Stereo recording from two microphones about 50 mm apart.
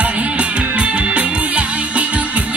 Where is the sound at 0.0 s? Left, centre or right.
Right.